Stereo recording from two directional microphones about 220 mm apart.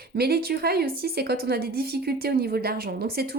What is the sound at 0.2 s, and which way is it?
A woman's voice, 45° right (ahead or behind).